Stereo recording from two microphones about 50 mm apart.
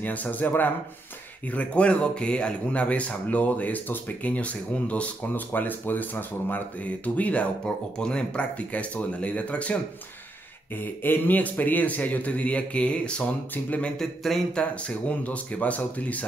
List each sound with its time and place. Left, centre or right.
0.0 s a man's voice: left
1.5 s speech: left
4.3 s speech: left
5.3 s a man's voice: left
7.6 s speech: centre
10.7 s a man's voice: left
13.9 s speech: centre
14.5 s speech: left